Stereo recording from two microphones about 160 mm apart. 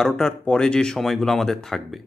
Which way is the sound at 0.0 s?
5° left (ahead or behind).